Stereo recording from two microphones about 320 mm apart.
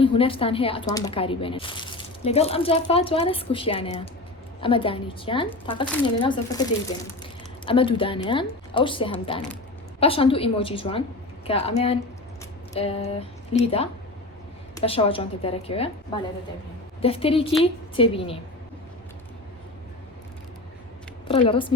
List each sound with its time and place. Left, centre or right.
0.0 s speech: centre
21.2 s speech: centre